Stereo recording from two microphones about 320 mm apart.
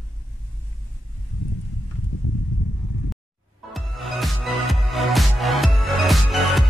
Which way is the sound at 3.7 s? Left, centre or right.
Centre.